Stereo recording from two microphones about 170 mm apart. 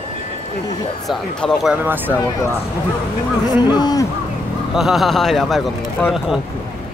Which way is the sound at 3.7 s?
25° left (ahead or behind).